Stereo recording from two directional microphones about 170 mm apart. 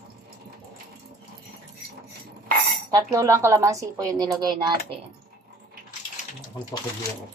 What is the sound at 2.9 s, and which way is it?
Speech, 20° right (ahead or behind).